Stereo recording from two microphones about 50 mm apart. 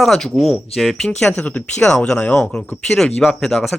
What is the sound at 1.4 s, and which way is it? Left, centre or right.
Speech, left.